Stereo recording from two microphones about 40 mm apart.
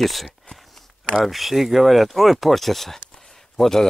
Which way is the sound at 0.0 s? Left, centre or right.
Centre.